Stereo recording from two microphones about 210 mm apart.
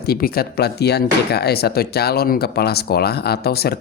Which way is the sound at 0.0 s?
45° left (ahead or behind).